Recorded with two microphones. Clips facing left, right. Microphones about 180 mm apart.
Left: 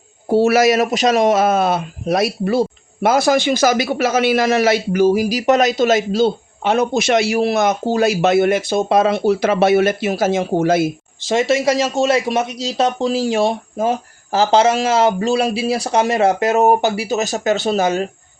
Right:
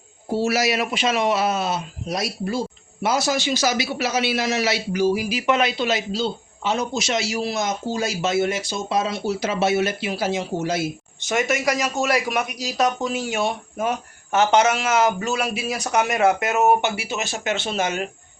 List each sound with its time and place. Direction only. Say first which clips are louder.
0.3 s speech: left 8 dB; 60° left (ahead or behind)
11.3 s speech: left 6 dB; 30° left (ahead or behind)